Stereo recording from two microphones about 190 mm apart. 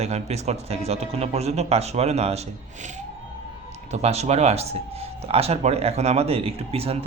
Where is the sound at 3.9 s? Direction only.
35° right (ahead or behind).